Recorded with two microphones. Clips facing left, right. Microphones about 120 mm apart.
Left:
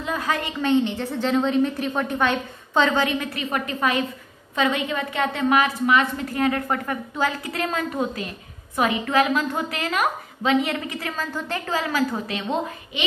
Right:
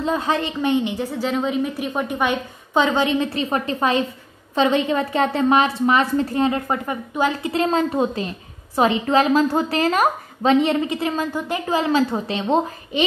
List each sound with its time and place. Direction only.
0.0 s a woman's voice: 25° right (ahead or behind)